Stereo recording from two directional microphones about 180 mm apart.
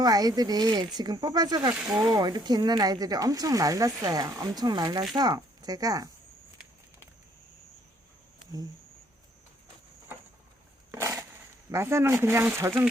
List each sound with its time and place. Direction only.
0.0 s speech: 20° right (ahead or behind)
10.9 s a sound: 15° right (ahead or behind)
11.7 s speech: 15° right (ahead or behind)